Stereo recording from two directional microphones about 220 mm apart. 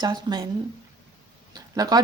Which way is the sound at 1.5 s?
15° right (ahead or behind).